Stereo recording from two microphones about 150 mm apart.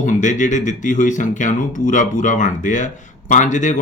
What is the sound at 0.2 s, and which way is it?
Speech, 55° left (ahead or behind).